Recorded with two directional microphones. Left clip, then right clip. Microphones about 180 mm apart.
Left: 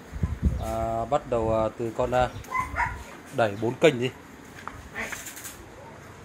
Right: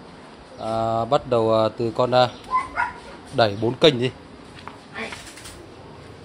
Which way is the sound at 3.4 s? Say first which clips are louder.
Right 5 dB; 20° right (ahead or behind).